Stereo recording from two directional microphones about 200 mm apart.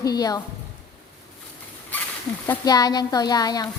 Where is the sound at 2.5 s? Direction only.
20° left (ahead or behind).